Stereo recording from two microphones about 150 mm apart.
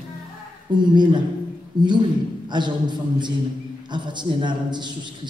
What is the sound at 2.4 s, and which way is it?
A man's voice, 30° right (ahead or behind).